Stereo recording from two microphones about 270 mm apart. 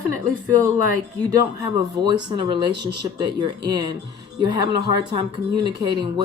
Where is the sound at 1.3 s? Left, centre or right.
Centre.